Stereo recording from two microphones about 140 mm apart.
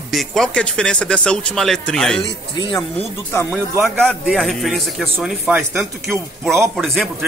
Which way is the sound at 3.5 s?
Centre (ahead or behind).